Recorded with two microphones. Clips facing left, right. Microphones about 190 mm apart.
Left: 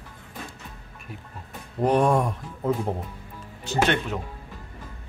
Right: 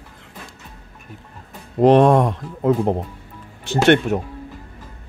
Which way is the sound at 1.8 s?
90° right.